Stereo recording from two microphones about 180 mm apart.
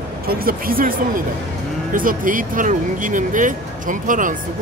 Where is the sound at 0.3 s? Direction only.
55° right (ahead or behind).